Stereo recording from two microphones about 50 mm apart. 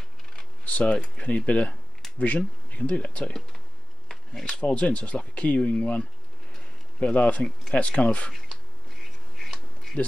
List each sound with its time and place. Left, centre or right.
0.7 s speech: left; by 4.6 s centre
4.6 s speech: left
9.4 s insect: centre